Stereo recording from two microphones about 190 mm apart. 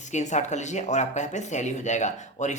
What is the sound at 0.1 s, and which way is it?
Speech, 40° left (ahead or behind).